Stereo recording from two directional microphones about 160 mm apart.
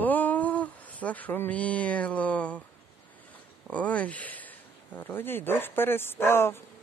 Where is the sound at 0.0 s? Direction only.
10° left (ahead or behind).